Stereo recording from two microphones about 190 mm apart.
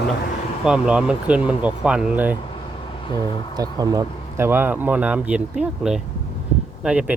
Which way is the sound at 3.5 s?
20° right (ahead or behind).